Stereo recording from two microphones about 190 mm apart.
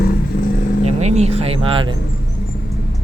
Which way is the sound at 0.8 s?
35° right (ahead or behind).